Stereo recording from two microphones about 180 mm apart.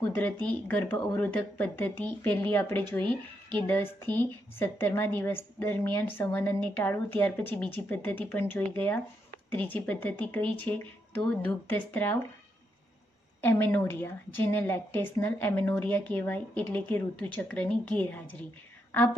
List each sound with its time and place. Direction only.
0.1 s speech: 10° left (ahead or behind)
13.4 s speech: 10° left (ahead or behind)